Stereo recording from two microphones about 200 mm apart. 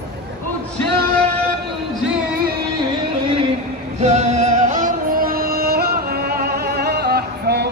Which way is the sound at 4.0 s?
35° right (ahead or behind).